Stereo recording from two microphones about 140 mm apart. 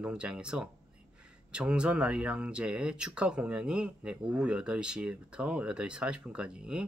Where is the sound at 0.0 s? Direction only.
5° right (ahead or behind).